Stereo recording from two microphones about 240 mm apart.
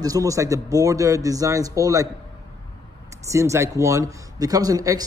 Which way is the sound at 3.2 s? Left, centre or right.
Centre.